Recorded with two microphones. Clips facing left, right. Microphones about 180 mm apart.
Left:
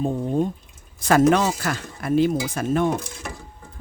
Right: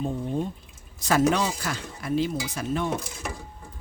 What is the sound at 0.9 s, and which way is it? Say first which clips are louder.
Speech: left 5 dB; 55° left (ahead or behind).